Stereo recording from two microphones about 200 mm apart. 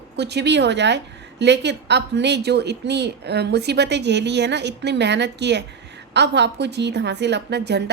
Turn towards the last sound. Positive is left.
turn(degrees=-55)  # may be behind; listen again after turning